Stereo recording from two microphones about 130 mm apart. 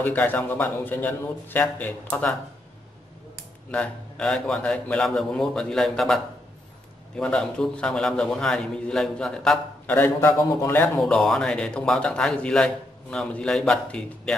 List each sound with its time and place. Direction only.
0.0 s a man's voice: 15° left (ahead or behind)
3.7 s speech: 10° left (ahead or behind)
9.9 s speech: 20° left (ahead or behind)
11.0 s speech: 5° left (ahead or behind)